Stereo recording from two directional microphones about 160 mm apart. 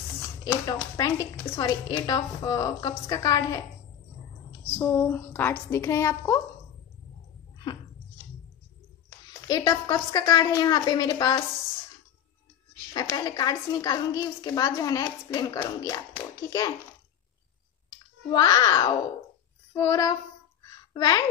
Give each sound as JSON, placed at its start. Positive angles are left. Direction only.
{"t": 0.4, "sound": "a woman's voice", "side_deg": 25}
{"t": 4.7, "sound": "a woman's voice", "side_deg": 10}
{"t": 9.5, "sound": "a woman's voice", "side_deg": 25}
{"t": 12.9, "sound": "a woman's voice", "side_deg": 25}
{"t": 17.8, "sound": "a child's voice", "side_deg": 25}